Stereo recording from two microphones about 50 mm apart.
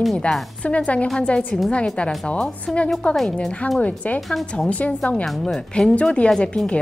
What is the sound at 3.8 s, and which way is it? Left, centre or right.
A woman's voice, left.